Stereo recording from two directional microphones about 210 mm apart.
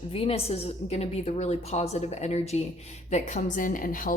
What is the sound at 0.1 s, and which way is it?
A woman's voice, 25° left (ahead or behind).